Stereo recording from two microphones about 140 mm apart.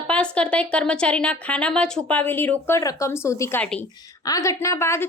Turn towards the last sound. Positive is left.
turn(degrees=20)  # may be behind; listen again after turning